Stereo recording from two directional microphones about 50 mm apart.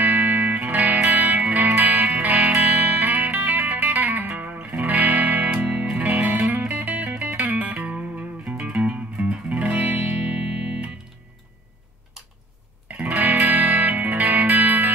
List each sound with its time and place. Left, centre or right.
0.0 s music: right
12.8 s music: right